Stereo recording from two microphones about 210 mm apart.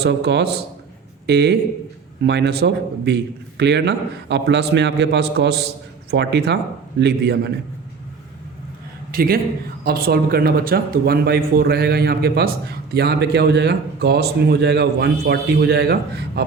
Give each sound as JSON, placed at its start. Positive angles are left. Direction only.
{"t": 0.0, "sound": "speech", "side_deg": -55}
{"t": 9.1, "sound": "speech", "side_deg": -45}